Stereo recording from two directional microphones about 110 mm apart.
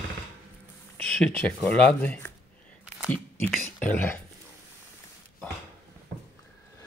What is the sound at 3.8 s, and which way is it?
Speech, 15° left (ahead or behind).